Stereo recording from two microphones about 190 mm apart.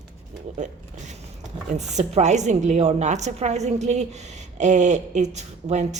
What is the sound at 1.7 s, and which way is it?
A woman's voice, 35° right (ahead or behind).